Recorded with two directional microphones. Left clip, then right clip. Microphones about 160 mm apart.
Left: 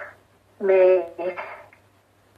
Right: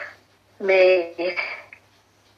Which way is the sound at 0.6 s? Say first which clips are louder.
Even; 50° right (ahead or behind).